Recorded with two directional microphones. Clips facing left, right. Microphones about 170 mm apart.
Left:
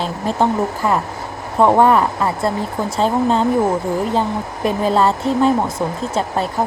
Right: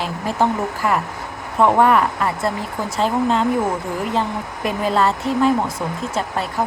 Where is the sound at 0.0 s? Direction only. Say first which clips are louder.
Left 2 dB; 25° left (ahead or behind).